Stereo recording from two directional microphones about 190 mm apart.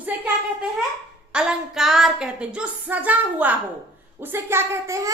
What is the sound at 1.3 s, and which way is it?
A child's voice, 5° right (ahead or behind).